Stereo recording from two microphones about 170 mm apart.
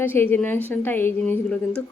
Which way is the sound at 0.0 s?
10° left (ahead or behind).